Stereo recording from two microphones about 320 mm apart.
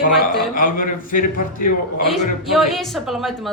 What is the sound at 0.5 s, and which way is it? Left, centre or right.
Speech, left.